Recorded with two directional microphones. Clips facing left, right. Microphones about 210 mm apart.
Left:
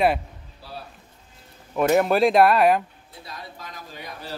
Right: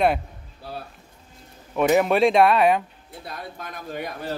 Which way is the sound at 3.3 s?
55° right (ahead or behind).